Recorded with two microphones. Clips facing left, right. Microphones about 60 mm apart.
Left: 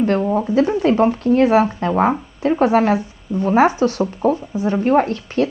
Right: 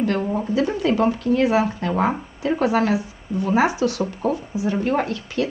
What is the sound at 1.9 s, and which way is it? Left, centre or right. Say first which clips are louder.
A woman's voice: left 4 dB; left.